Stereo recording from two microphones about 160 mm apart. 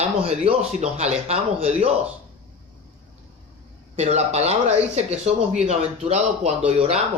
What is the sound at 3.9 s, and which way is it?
Speech, 45° right (ahead or behind).